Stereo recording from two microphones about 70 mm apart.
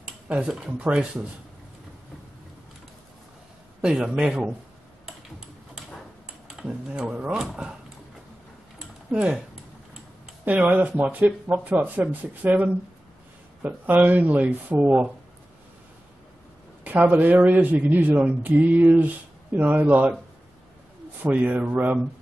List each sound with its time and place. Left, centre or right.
0.0 s speech: centre
3.8 s a man's voice: centre
6.4 s speech: centre
9.1 s a man's voice: centre
10.4 s speech: right
16.9 s speech: right
21.2 s speech: right